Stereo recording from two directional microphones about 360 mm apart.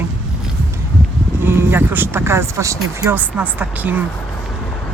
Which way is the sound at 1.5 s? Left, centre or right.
Centre.